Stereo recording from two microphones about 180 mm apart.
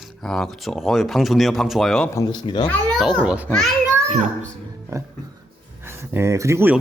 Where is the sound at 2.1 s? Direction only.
20° left (ahead or behind).